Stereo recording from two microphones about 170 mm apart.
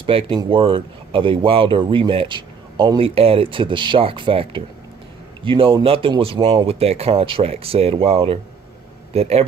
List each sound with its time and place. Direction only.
0.0 s speech: 30° right (ahead or behind)